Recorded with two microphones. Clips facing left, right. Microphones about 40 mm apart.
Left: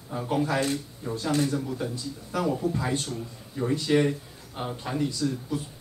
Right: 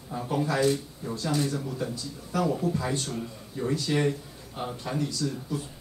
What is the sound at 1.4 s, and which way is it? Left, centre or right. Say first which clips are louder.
Speech: left 2 dB; centre.